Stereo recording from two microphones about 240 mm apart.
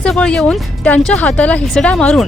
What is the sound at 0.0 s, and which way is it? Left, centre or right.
Speech, centre.